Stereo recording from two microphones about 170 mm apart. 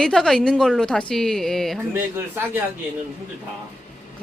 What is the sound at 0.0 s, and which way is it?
A woman's voice, 5° left (ahead or behind).